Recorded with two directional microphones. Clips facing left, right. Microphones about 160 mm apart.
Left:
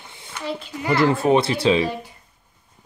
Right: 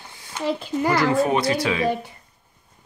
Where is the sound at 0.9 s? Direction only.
25° left (ahead or behind).